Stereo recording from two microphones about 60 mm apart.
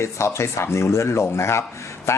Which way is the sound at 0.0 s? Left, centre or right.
Left.